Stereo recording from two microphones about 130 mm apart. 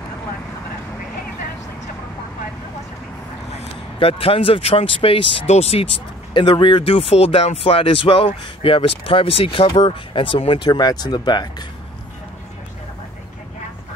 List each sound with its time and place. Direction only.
3.5 s speech: 45° left (ahead or behind)
6.3 s speech: 40° left (ahead or behind)